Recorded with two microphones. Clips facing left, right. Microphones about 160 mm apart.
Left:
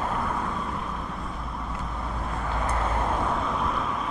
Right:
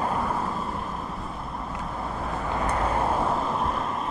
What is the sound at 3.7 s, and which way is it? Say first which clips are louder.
Vehicle: even; centre (ahead or behind).